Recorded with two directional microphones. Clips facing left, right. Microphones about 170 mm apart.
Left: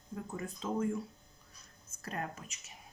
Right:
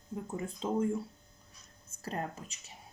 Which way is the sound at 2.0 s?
30° right (ahead or behind).